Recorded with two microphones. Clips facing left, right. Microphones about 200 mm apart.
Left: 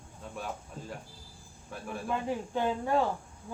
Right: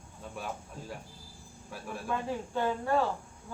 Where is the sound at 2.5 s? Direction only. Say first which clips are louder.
Even; 15° left (ahead or behind).